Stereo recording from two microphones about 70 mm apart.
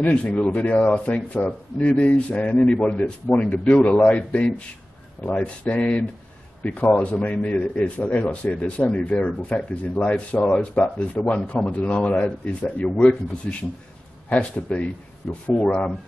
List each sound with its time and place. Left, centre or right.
0.0 s a man's voice: centre